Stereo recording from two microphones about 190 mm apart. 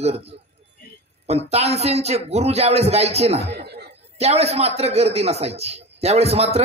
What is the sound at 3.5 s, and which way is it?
Laughter, 60° right (ahead or behind).